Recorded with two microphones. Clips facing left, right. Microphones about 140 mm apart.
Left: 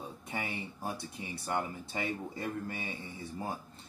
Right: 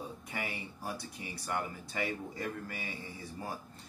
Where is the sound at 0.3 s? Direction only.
25° left (ahead or behind).